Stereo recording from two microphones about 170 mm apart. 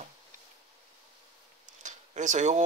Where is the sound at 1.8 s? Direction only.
45° right (ahead or behind).